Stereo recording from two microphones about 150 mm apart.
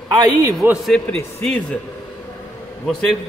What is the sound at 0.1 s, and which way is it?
Speech, 25° right (ahead or behind).